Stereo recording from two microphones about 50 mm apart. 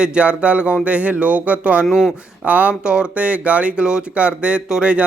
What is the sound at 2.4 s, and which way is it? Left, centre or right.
Speech, right.